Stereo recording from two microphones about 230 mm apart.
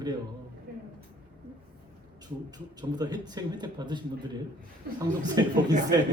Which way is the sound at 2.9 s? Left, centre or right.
Centre.